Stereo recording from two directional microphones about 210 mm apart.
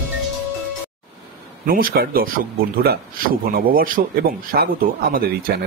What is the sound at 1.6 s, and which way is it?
A man's voice, 45° right (ahead or behind).